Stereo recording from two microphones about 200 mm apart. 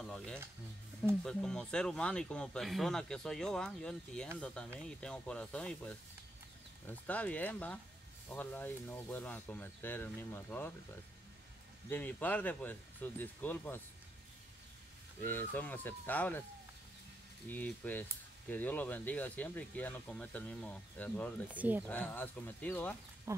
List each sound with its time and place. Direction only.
0.0 s stir: 5° left (ahead or behind)
1.2 s speech: 5° left (ahead or behind)
11.9 s speech: 10° left (ahead or behind)
15.2 s speech: 10° left (ahead or behind)
17.5 s speech: 10° left (ahead or behind)
21.5 s speech: 10° right (ahead or behind)
21.8 s speech: 5° left (ahead or behind)
23.3 s speech: 15° right (ahead or behind)